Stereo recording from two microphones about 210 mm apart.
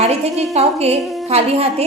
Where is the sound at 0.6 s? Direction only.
30° right (ahead or behind).